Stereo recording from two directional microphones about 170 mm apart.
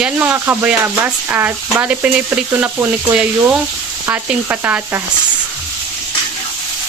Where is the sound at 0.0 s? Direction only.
10° right (ahead or behind).